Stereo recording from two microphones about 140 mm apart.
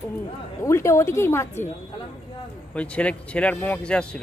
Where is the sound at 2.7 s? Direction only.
10° left (ahead or behind).